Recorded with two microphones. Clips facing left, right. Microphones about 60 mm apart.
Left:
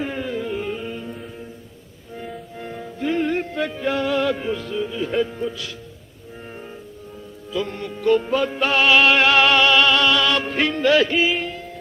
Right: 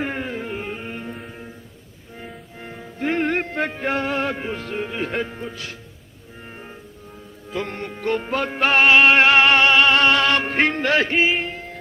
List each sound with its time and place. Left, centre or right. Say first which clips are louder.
0.0 s music: left 1 dB; right
0.9 s music: even; right
2.1 s music: left 5 dB; centre
3.0 s music: even; right
4.6 s speech: left 1 dB; right
5.3 s music: left 5 dB; right
7.5 s music: left 2 dB; right
8.9 s music: right 1 dB; right